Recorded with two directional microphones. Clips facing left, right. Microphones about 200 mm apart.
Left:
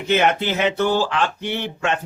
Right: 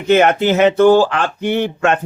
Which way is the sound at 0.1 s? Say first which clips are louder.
Right 7 dB; 50° right (ahead or behind).